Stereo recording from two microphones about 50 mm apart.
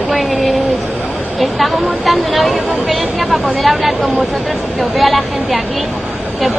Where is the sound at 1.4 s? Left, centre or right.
Centre.